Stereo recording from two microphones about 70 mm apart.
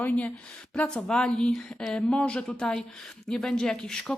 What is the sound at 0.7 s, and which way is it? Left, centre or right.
A woman's voice, centre.